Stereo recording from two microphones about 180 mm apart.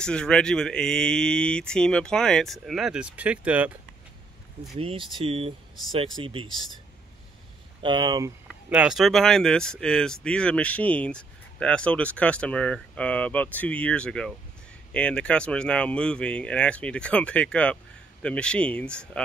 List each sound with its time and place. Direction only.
0.0 s speech: 5° left (ahead or behind)
4.7 s speech: 30° right (ahead or behind)
7.8 s speech: 25° right (ahead or behind)
8.6 s speech: 5° right (ahead or behind)